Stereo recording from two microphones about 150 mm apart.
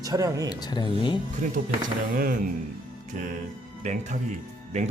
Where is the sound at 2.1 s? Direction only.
75° right (ahead or behind).